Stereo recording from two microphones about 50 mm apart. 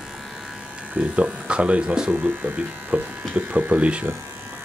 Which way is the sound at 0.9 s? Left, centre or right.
Right.